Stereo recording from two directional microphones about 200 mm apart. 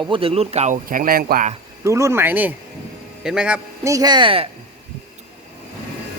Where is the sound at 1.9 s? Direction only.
15° right (ahead or behind).